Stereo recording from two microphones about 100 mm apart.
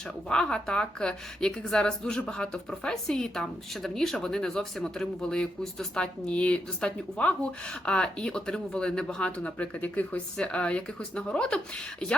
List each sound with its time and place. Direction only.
0.3 s a woman's voice: 10° left (ahead or behind)